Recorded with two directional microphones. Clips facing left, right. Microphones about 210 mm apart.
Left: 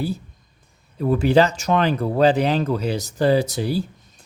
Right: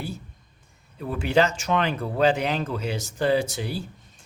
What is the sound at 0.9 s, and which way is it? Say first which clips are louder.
Speech: left 6 dB; 40° left (ahead or behind).